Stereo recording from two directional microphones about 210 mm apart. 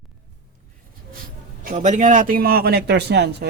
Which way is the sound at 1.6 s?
35° right (ahead or behind).